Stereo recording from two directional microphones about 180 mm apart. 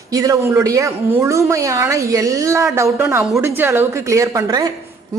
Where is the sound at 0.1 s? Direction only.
20° right (ahead or behind).